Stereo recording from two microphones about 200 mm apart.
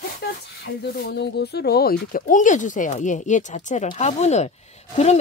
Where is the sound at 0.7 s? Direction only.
55° left (ahead or behind).